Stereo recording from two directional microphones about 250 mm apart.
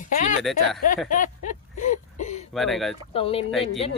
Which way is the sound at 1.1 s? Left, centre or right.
Left.